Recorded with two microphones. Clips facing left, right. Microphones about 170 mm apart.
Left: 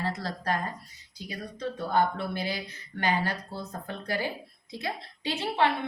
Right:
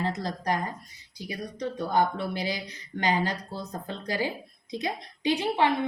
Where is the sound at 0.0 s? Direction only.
20° right (ahead or behind).